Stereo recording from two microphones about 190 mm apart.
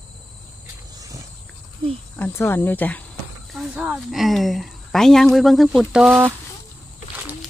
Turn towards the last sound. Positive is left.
turn(degrees=0)  # may be behind; listen again after turning